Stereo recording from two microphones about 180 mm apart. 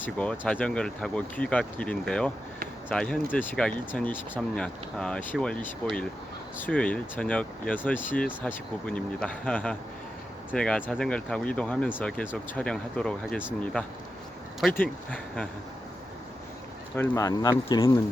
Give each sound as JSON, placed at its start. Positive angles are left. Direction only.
{"t": 0.0, "sound": "speech", "side_deg": 5}
{"t": 16.9, "sound": "speech", "side_deg": 15}